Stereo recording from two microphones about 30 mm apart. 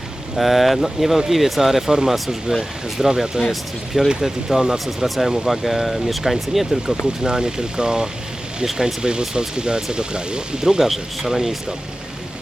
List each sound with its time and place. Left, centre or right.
0.3 s speech: centre
2.6 s speech: centre
3.5 s speech: centre
4.6 s speech: right
5.0 s speech: centre
7.3 s speech: right
10.8 s speech: centre